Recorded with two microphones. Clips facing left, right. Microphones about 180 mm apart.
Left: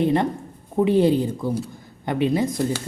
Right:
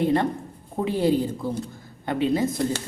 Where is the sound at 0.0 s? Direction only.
20° left (ahead or behind).